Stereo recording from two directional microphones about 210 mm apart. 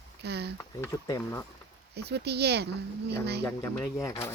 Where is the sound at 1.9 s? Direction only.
50° right (ahead or behind).